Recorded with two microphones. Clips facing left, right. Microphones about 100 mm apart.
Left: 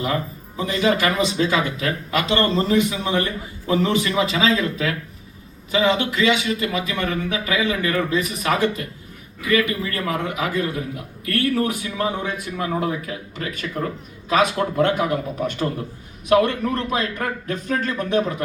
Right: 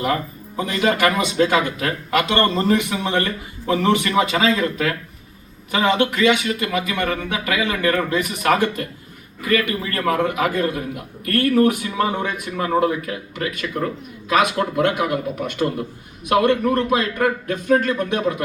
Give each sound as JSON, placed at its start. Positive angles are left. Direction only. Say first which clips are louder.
{"t": 0.0, "sound": "speech", "louder": "right 2 dB", "side_deg": -55}
{"t": 3.8, "sound": "a man's voice", "louder": "right 3 dB", "side_deg": -60}
{"t": 14.8, "sound": "speech", "louder": "left 1 dB", "side_deg": -70}